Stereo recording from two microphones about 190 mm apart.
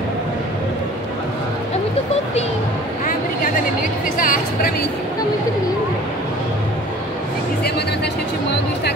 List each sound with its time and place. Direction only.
4.2 s music: 45° left (ahead or behind)